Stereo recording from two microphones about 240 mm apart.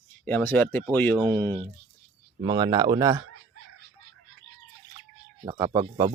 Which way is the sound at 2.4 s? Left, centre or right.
Centre.